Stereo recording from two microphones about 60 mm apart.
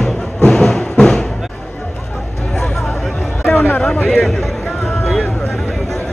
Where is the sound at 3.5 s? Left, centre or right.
Left.